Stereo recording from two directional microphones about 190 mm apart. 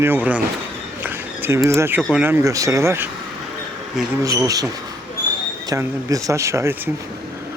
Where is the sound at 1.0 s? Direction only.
10° right (ahead or behind).